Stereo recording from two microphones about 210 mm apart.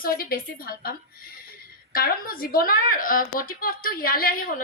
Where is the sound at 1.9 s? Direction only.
45° left (ahead or behind).